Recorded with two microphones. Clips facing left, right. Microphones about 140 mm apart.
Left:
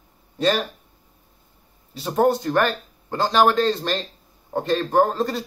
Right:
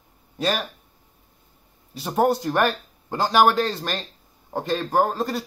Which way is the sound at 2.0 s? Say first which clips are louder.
Left 1 dB; 10° right (ahead or behind).